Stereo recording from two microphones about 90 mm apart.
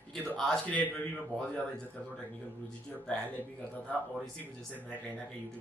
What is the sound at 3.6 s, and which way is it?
A man's voice, 15° left (ahead or behind).